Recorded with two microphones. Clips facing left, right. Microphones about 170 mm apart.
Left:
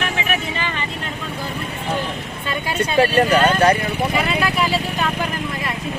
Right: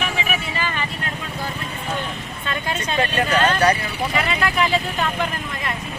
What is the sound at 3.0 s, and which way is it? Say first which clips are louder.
Speech: left 5 dB; 35° left (ahead or behind).